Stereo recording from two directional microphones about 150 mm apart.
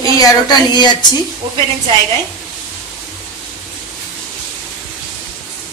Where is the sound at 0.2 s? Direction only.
30° left (ahead or behind).